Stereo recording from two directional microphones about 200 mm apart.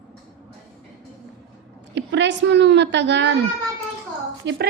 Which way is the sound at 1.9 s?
65° right (ahead or behind).